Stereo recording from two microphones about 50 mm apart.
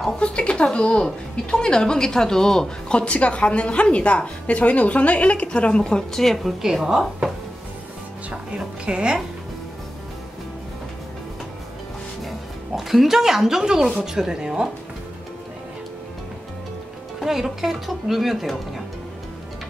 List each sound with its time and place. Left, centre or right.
0.2 s a woman's voice: left
2.9 s a woman's voice: left; by 7.3 s centre
8.3 s a woman's voice: centre
12.3 s speech: centre
17.2 s speech: centre